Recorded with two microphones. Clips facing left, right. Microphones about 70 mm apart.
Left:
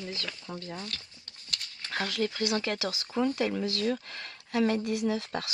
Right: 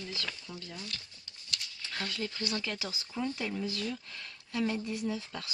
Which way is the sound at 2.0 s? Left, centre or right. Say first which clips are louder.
Left 7 dB; left.